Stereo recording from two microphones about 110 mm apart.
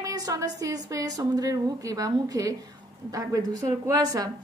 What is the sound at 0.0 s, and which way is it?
A woman's voice, 35° right (ahead or behind).